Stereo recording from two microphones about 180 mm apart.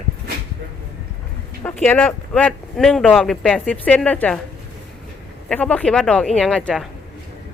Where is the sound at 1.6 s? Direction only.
10° left (ahead or behind).